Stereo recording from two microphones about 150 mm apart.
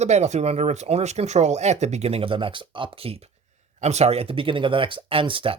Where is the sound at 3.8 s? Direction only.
45° right (ahead or behind).